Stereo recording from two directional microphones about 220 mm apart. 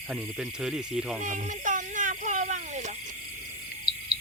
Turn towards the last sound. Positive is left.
turn(degrees=45)  # may be behind; listen again after turning